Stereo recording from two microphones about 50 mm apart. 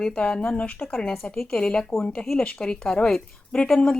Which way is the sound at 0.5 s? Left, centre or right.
Left.